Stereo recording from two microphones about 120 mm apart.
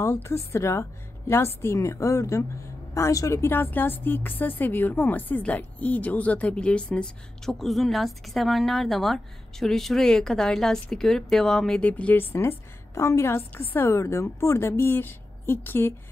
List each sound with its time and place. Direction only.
0.0 s a woman's voice: 20° left (ahead or behind)